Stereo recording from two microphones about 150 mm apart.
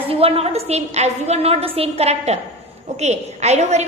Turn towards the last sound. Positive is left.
turn(degrees=-50)  # may be behind; listen again after turning